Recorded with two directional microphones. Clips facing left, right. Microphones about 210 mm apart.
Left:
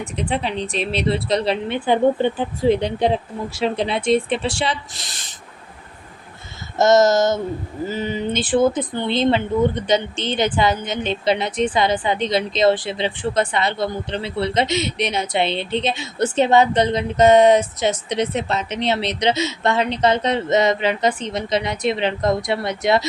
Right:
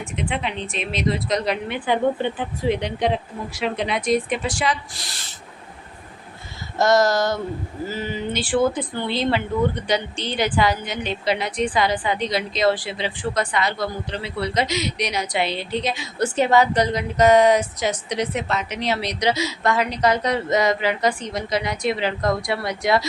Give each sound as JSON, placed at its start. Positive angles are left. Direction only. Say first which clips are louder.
{"t": 0.0, "sound": "a woman's voice", "louder": "left 3 dB", "side_deg": 35}
{"t": 6.7, "sound": "speech", "louder": "left 4 dB", "side_deg": 25}